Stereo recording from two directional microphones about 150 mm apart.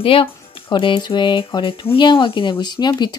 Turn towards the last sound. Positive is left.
turn(degrees=30)  # may be behind; listen again after turning